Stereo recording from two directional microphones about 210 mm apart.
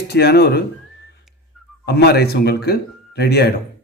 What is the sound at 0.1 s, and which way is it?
Speech, 50° left (ahead or behind).